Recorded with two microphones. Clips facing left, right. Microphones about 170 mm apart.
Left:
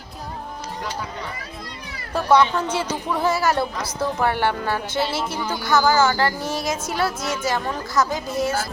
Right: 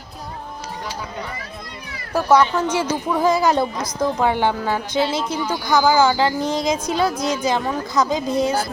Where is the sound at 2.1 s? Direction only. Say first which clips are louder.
Right 2 dB; 10° right (ahead or behind).